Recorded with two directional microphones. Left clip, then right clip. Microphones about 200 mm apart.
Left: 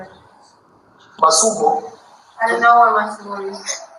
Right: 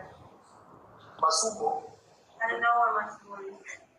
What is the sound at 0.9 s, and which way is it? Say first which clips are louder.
A woman's voice: left 12 dB; 40° left (ahead or behind).